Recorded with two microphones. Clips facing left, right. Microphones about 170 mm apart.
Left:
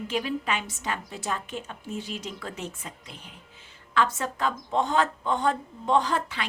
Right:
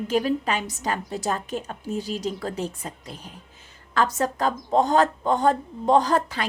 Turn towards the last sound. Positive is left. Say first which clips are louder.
# right 5 dB
turn(degrees=-40)  # may be behind; listen again after turning